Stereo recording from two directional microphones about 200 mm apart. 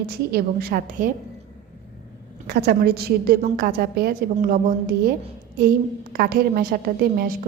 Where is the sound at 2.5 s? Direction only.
50° right (ahead or behind).